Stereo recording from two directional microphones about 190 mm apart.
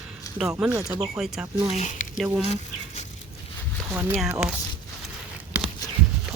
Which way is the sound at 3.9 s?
10° right (ahead or behind).